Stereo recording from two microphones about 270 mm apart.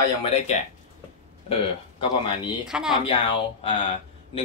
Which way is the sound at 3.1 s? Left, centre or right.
Centre.